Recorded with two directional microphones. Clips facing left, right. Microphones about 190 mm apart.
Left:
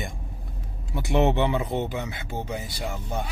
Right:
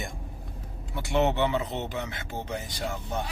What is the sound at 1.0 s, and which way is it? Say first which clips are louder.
Speech: left 3 dB; 15° left (ahead or behind).